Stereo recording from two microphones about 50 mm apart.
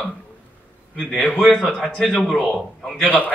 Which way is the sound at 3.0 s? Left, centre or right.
Left.